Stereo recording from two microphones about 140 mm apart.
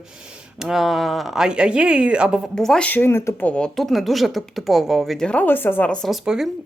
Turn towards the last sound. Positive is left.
turn(degrees=0)  # may be behind; listen again after turning